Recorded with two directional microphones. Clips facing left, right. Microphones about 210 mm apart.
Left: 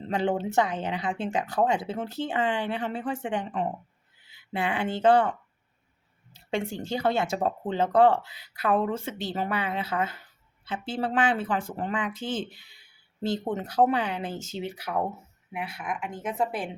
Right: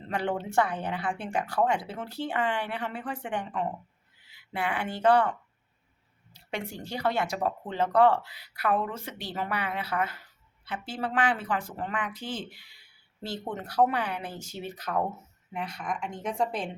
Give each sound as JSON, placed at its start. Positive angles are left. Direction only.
{"t": 0.1, "sound": "speech", "side_deg": 20}
{"t": 6.3, "sound": "speech", "side_deg": 25}